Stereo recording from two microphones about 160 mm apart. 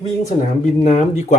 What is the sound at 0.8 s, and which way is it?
Speech, 45° left (ahead or behind).